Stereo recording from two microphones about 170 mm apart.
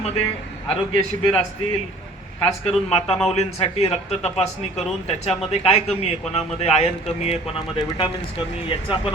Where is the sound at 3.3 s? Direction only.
35° left (ahead or behind).